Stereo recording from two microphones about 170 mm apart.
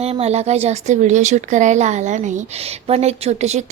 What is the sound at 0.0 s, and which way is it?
Speech, 40° right (ahead or behind).